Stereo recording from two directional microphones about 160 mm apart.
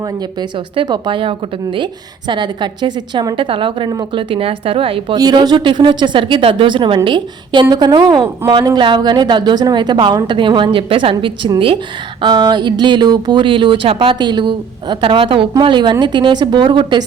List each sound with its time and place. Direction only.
0.8 s a woman's voice: 30° right (ahead or behind)